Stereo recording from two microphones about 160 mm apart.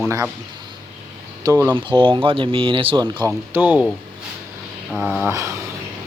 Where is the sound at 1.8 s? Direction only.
30° right (ahead or behind).